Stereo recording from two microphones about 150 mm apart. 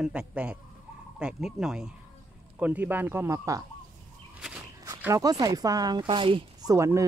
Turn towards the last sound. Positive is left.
turn(degrees=-20)  # may be behind; listen again after turning